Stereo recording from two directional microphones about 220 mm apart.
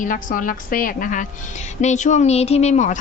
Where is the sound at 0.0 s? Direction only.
35° left (ahead or behind).